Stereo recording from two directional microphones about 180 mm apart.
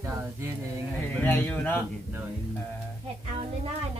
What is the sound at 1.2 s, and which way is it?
Speech, 10° left (ahead or behind).